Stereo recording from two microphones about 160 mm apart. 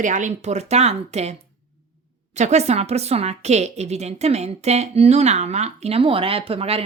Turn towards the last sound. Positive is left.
turn(degrees=-40)  # may be behind; listen again after turning